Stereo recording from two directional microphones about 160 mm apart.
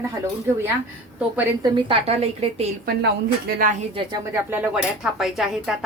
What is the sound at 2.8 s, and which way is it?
Speech, 80° right.